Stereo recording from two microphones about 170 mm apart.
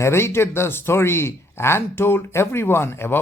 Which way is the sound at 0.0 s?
15° left (ahead or behind).